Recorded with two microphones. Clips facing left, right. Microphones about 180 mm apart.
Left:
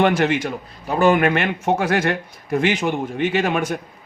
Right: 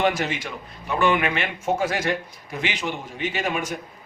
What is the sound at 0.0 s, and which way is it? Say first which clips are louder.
A man's voice: left 6 dB; 60° left (ahead or behind).